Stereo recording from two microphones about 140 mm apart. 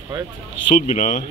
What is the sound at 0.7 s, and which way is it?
Speech, 60° left (ahead or behind).